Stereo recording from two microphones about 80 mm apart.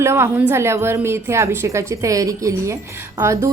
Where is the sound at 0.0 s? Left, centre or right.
Right.